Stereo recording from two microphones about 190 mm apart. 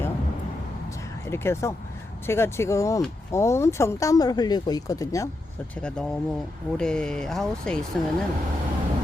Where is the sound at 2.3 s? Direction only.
15° left (ahead or behind).